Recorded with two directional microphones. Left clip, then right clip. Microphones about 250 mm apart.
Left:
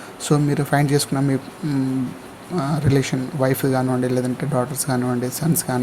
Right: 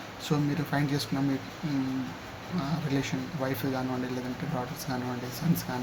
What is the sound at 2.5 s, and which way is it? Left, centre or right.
Speech, left.